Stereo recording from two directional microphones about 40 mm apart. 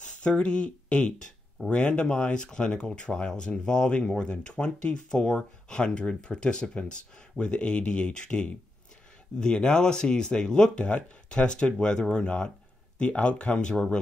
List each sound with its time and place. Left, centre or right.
0.3 s speech: left